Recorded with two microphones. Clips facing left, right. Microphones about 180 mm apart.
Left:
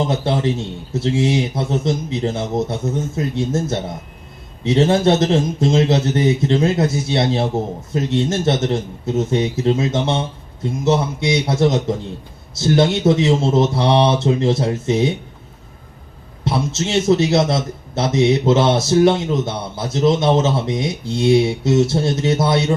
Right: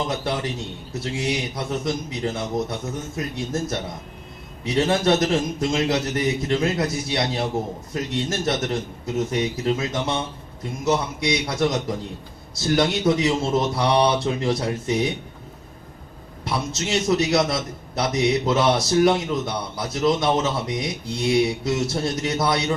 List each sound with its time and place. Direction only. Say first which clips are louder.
0.1 s a man's voice: left 7 dB; 25° left (ahead or behind)
16.4 s a man's voice: left 6 dB; 25° left (ahead or behind)